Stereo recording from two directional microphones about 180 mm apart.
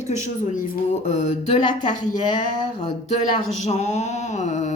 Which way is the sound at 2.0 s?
40° left (ahead or behind).